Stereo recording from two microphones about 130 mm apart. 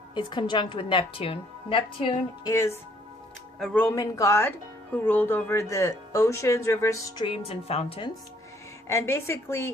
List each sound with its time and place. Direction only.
0.1 s a woman's voice: 35° left (ahead or behind)
2.5 s speech: 20° left (ahead or behind)
3.6 s speech: 5° left (ahead or behind)
3.8 s speech: 25° left (ahead or behind)
7.3 s a woman's voice: 50° left (ahead or behind)
8.9 s speech: 20° left (ahead or behind)